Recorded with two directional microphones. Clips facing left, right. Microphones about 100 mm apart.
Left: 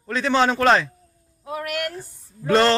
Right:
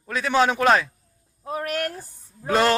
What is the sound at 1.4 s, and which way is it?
Speech, 35° right (ahead or behind).